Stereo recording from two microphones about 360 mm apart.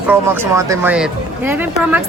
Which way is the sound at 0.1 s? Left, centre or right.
Centre.